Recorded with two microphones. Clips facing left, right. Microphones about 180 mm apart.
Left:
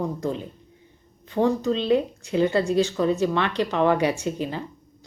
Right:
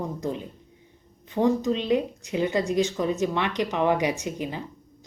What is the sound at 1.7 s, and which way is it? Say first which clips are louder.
Speech: left 2 dB; 15° right (ahead or behind).